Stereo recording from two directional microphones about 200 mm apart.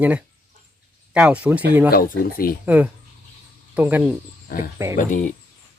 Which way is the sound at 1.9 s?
45° left (ahead or behind).